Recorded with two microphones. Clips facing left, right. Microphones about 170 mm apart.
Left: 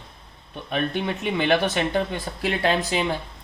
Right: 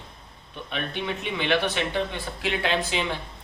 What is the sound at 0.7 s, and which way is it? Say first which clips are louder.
Speech: left 5 dB; 45° left (ahead or behind).